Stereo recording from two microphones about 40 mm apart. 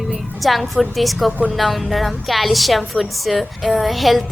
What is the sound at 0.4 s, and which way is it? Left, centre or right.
Speech, centre.